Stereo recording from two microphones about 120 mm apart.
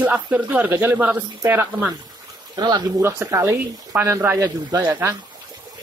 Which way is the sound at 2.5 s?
40° right (ahead or behind).